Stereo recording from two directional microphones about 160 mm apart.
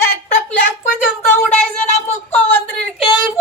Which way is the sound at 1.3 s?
10° left (ahead or behind).